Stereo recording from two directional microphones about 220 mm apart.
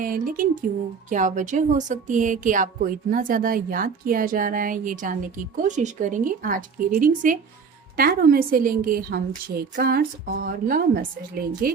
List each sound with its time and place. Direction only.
0.0 s speech: 40° right (ahead or behind)